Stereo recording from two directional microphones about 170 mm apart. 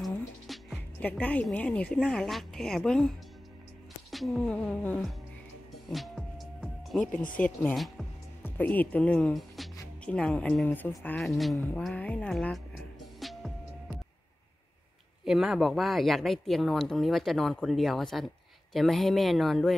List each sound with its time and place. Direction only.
0.0 s speech: centre (ahead or behind)
5.9 s music: centre (ahead or behind)
7.3 s speech: 10° left (ahead or behind)
8.5 s speech: 10° left (ahead or behind)
12.2 s music: 5° left (ahead or behind)
15.2 s speech: centre (ahead or behind)